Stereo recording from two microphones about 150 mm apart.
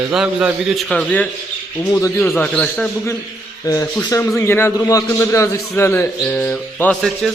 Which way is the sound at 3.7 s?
20° left (ahead or behind).